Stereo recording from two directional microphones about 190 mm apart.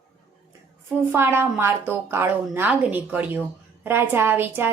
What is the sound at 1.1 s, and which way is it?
A woman's voice, 10° right (ahead or behind).